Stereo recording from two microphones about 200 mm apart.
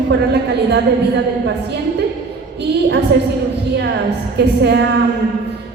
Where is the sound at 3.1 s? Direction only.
55° right (ahead or behind).